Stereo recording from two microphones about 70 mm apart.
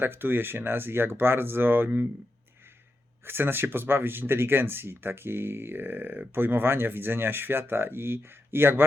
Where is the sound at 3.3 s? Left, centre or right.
Right.